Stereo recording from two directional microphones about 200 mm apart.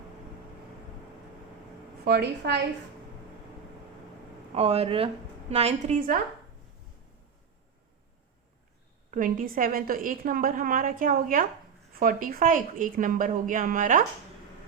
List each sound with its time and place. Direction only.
2.0 s a woman's voice: 50° right (ahead or behind)
4.5 s a woman's voice: 30° right (ahead or behind)
9.0 s a woman's voice: 40° right (ahead or behind)